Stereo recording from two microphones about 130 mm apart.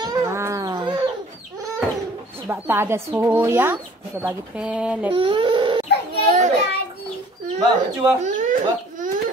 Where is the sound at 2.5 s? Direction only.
15° right (ahead or behind).